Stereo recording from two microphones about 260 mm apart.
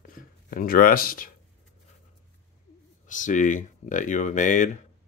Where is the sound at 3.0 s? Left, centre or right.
Left.